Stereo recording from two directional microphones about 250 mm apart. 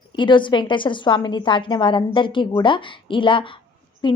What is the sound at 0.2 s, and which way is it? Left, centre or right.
A woman's voice, centre.